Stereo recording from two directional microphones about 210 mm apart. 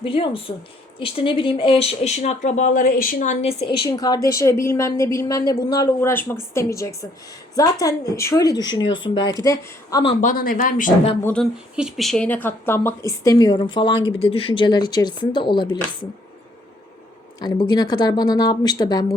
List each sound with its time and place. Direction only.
0.0 s a woman's voice: 25° left (ahead or behind)
10.2 s speech: 40° left (ahead or behind)
11.2 s a woman's voice: 10° left (ahead or behind)
17.4 s speech: 20° left (ahead or behind)